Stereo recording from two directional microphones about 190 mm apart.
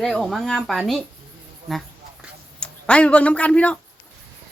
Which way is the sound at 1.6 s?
Centre (ahead or behind).